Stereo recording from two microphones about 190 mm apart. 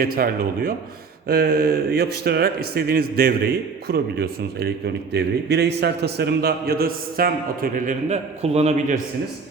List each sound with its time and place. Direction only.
0.0 s a man's voice: 50° right (ahead or behind); by 9.0 s 35° right (ahead or behind)